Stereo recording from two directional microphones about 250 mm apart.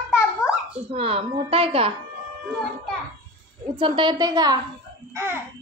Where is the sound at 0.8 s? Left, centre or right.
Right.